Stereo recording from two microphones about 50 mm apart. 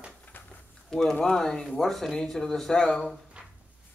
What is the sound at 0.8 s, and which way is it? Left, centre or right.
Speech, centre.